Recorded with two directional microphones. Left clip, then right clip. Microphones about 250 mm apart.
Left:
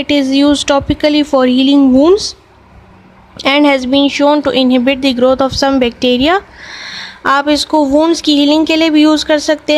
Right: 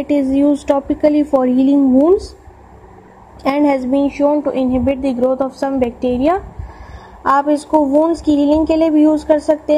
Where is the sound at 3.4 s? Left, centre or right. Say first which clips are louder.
Left 5 dB; left.